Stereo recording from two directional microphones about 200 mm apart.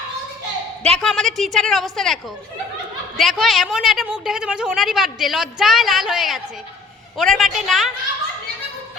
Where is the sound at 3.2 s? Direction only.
Centre (ahead or behind).